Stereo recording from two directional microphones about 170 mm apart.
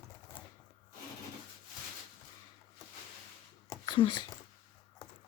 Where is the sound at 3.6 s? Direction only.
30° left (ahead or behind).